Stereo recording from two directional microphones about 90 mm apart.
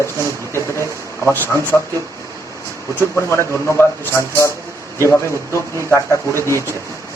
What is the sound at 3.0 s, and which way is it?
A man's voice, 30° left (ahead or behind).